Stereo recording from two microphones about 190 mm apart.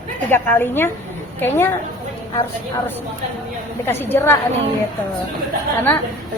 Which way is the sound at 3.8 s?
10° left (ahead or behind).